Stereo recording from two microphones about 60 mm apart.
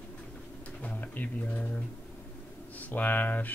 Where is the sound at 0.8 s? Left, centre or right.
Left.